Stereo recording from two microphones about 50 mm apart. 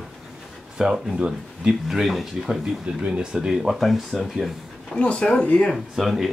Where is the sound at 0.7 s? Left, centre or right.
Centre.